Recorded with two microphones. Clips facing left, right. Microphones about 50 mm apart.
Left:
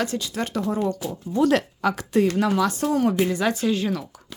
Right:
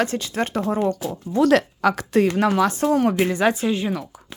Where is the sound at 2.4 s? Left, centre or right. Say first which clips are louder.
Right 3 dB; right.